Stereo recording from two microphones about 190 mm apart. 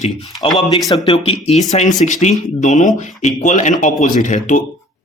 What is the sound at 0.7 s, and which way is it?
Speech, 25° left (ahead or behind).